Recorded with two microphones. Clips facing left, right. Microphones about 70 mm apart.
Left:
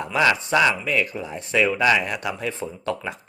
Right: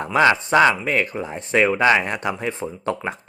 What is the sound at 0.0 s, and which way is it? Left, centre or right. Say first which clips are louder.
Speech: right 4 dB; right.